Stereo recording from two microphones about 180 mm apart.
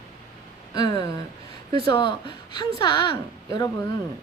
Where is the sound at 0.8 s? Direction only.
25° left (ahead or behind).